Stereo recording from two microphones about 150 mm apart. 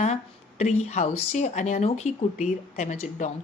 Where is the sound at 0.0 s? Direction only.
50° left (ahead or behind).